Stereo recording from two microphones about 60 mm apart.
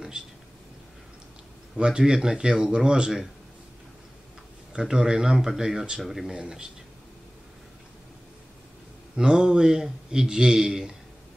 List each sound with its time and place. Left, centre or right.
1.8 s speech: centre
4.7 s speech: centre
9.1 s speech: centre